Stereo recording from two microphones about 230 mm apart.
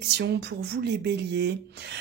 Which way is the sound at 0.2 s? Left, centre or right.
Right.